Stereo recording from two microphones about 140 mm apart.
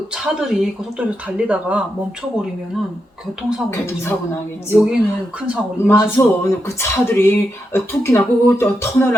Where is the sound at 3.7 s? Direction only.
20° left (ahead or behind).